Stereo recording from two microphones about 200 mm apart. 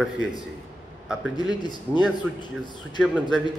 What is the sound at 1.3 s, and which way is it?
Speech, 20° left (ahead or behind).